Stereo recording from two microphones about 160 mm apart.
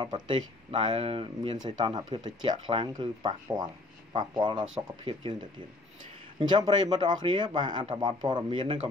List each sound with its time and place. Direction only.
0.3 s speech: 30° right (ahead or behind)